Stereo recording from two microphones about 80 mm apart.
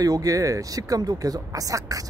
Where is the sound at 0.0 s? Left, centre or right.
Right.